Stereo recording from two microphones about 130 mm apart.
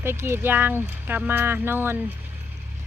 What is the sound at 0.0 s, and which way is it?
Speech, 20° right (ahead or behind).